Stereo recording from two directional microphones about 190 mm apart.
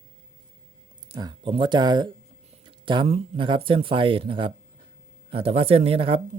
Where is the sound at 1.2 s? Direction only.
25° right (ahead or behind).